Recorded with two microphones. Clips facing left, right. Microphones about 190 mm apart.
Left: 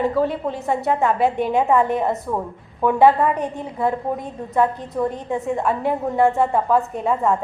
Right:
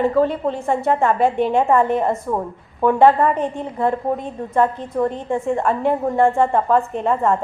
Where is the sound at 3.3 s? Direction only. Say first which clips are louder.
Right 3 dB; 20° right (ahead or behind).